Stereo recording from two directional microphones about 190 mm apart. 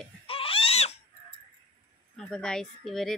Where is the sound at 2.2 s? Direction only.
5° left (ahead or behind).